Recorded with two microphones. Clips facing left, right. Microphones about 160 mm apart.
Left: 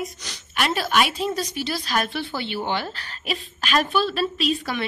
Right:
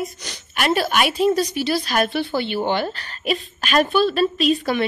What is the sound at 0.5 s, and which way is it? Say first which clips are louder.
A woman's voice: right 2 dB; 55° right (ahead or behind).